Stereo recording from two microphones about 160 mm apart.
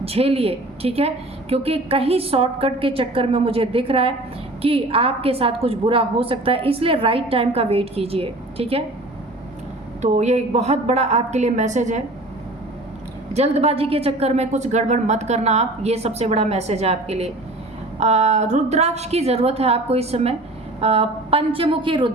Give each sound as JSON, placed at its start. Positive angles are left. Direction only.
{"t": 0.0, "sound": "a woman's voice", "side_deg": -40}
{"t": 10.0, "sound": "a woman's voice", "side_deg": -45}
{"t": 13.3, "sound": "a woman's voice", "side_deg": -40}